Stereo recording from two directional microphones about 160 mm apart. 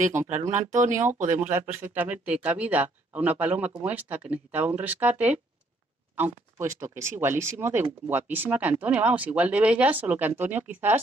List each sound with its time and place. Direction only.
0.2 s speech: 50° right (ahead or behind)
0.9 s speech: 10° right (ahead or behind)